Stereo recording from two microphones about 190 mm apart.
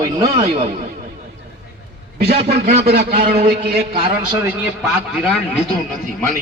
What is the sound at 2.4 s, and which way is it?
Speech, 60° right (ahead or behind).